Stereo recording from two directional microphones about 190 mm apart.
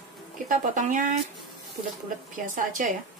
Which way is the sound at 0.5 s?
40° right (ahead or behind).